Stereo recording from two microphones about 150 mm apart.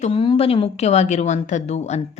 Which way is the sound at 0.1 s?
35° left (ahead or behind).